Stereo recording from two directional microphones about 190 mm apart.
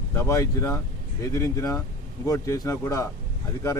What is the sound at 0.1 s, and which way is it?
Speech, 15° left (ahead or behind).